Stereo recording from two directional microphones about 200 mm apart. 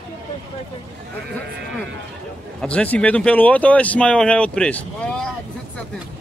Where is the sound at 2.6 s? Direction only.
5° left (ahead or behind).